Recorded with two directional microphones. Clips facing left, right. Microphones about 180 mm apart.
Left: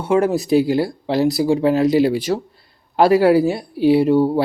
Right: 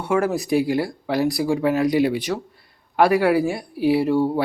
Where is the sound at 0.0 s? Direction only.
20° left (ahead or behind).